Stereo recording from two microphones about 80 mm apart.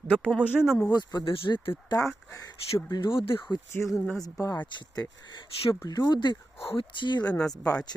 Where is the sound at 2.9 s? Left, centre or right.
Left.